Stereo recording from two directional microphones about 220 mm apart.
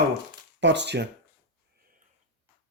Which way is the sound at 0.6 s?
50° right (ahead or behind).